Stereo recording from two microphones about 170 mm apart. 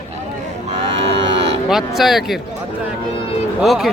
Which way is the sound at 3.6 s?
Centre (ahead or behind).